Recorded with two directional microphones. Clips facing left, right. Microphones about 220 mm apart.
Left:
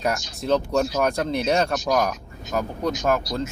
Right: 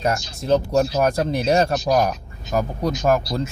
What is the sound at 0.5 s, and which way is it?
Speech, 30° right (ahead or behind).